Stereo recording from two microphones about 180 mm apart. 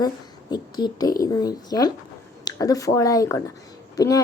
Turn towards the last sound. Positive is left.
turn(degrees=20)  # may be behind; listen again after turning